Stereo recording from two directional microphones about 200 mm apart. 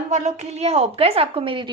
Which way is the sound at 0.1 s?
35° right (ahead or behind).